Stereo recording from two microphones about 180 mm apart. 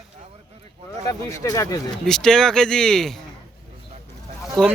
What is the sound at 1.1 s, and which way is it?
Speech, 20° left (ahead or behind).